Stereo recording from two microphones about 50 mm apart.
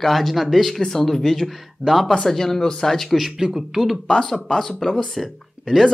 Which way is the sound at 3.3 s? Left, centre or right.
Centre.